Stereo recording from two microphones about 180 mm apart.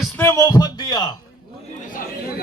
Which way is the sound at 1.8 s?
50° left (ahead or behind).